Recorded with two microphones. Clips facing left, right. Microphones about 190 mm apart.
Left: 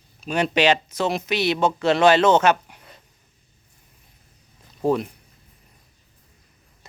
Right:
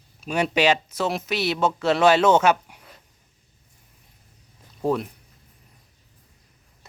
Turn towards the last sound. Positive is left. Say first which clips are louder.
# left 2 dB
turn(degrees=0)  # may be behind; listen again after turning